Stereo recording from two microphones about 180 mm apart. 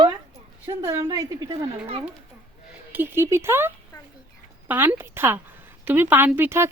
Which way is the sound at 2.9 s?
10° right (ahead or behind).